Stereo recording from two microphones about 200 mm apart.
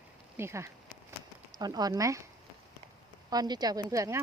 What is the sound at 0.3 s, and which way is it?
Speech, 15° right (ahead or behind).